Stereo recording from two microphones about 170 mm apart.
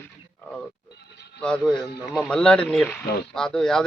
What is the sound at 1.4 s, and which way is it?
Speech, 5° left (ahead or behind).